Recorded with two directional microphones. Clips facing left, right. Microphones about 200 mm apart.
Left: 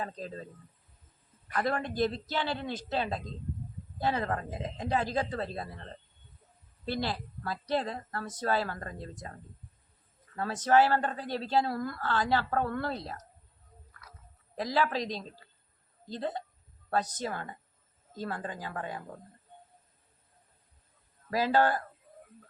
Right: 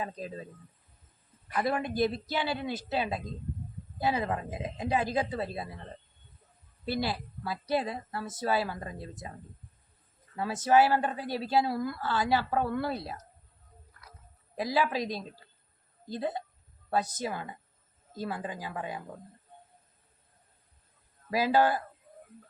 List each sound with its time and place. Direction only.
0.0 s a woman's voice: 10° right (ahead or behind)
1.5 s a woman's voice: 10° right (ahead or behind)
14.5 s a woman's voice: 10° right (ahead or behind)
21.2 s a woman's voice: 10° right (ahead or behind)